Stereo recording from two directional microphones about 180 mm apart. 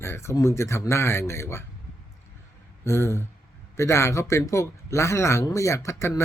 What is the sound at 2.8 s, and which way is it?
Speech, 15° left (ahead or behind).